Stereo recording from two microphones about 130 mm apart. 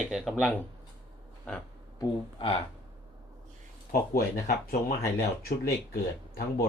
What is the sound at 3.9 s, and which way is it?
Speech, 90° left.